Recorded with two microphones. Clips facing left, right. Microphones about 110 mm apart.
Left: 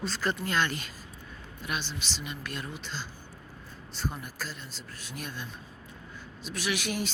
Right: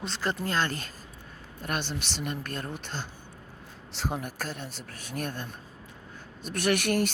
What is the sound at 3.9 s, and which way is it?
Speech, 80° right.